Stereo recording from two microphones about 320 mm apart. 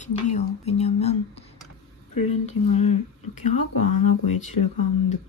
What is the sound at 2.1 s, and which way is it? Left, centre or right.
Speech, left.